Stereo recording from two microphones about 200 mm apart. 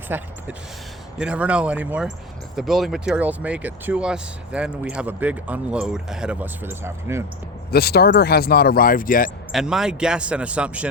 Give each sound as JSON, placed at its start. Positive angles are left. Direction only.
{"t": 0.1, "sound": "speech", "side_deg": -10}
{"t": 7.7, "sound": "speech", "side_deg": 50}
{"t": 9.5, "sound": "speech", "side_deg": -5}